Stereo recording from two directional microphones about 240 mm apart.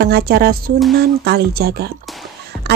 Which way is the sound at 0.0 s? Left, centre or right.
Right.